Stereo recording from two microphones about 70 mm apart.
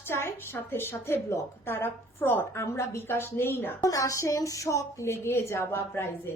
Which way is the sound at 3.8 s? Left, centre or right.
Left.